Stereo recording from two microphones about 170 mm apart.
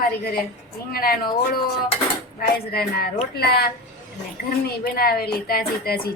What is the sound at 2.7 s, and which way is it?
Speech, 65° left (ahead or behind).